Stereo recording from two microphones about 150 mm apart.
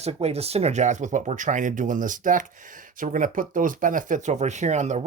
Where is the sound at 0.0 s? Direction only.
45° right (ahead or behind).